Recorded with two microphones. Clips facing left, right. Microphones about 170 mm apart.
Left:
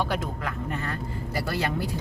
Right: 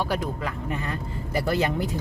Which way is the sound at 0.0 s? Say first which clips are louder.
Right 1 dB; 10° right (ahead or behind).